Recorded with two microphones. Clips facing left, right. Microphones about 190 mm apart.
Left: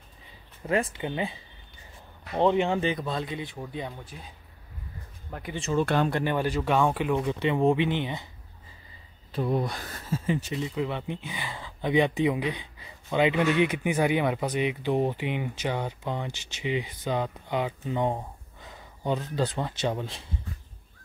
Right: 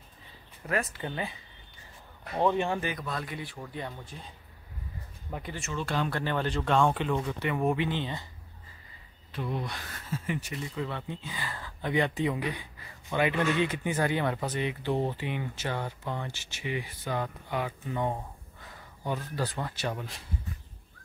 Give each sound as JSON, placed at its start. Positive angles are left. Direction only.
{"t": 0.7, "sound": "speech", "side_deg": 25}
{"t": 2.3, "sound": "speech", "side_deg": 20}
{"t": 5.3, "sound": "speech", "side_deg": 0}
{"t": 5.8, "sound": "speech", "side_deg": 55}
{"t": 6.0, "sound": "speech", "side_deg": 15}
{"t": 7.2, "sound": "speech", "side_deg": 20}
{"t": 9.3, "sound": "speech", "side_deg": 40}